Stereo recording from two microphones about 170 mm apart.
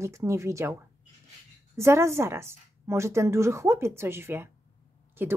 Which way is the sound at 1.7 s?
15° right (ahead or behind).